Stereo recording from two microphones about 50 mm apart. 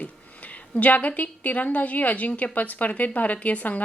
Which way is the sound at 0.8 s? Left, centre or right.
Left.